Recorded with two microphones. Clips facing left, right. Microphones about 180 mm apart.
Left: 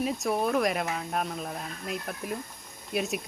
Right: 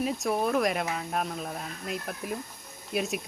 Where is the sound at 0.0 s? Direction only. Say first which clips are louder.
Even; centre (ahead or behind).